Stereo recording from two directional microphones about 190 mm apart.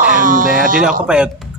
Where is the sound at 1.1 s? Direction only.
5° right (ahead or behind).